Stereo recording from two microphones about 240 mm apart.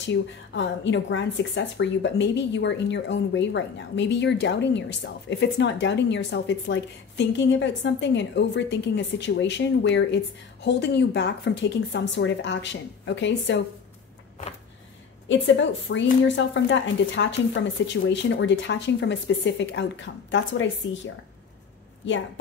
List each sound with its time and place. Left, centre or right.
0.0 s a woman's voice: left
15.2 s a woman's voice: left